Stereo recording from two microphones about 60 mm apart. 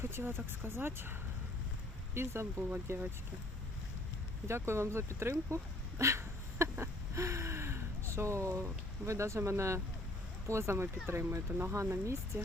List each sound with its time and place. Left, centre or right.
0.0 s speech: right
2.1 s speech: right
4.4 s speech: right
6.0 s a sound: right
10.4 s speech: right
11.7 s speech: right